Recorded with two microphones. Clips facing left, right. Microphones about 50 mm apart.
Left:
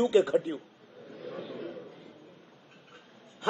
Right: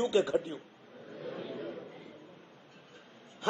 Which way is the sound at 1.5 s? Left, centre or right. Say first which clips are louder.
Left 1 dB; right.